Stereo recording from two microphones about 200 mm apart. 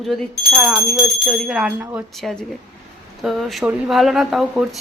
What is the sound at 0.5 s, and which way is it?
Speech, centre (ahead or behind).